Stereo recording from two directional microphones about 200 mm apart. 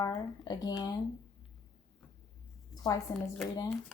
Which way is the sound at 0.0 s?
15° left (ahead or behind).